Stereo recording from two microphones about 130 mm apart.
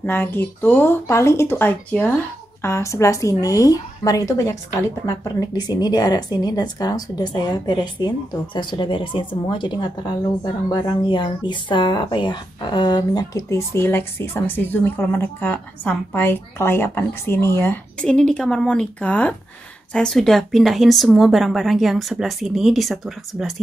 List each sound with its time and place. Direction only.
0.0 s a woman's voice: 15° left (ahead or behind)
18.0 s speech: 5° left (ahead or behind)